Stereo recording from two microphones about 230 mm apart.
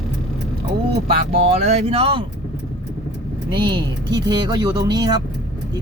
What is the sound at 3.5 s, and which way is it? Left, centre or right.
Speech, centre.